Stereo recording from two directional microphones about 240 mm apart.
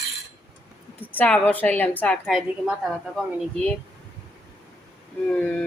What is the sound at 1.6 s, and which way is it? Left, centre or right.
A woman's voice, centre.